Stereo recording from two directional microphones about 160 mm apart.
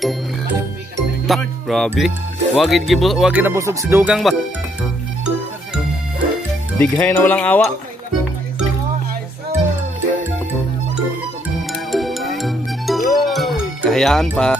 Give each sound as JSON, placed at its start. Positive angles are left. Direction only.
{"t": 1.2, "sound": "music", "side_deg": 0}
{"t": 2.0, "sound": "speech", "side_deg": 0}
{"t": 6.8, "sound": "cowbell", "side_deg": 10}
{"t": 11.9, "sound": "music", "side_deg": 0}